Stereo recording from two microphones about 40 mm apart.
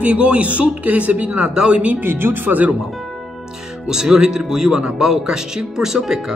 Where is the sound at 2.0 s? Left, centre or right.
Right.